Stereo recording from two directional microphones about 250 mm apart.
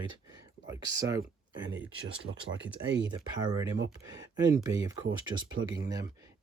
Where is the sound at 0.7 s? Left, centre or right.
Centre.